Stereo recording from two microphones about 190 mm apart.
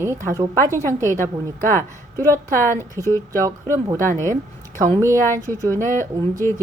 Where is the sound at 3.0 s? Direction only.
15° left (ahead or behind).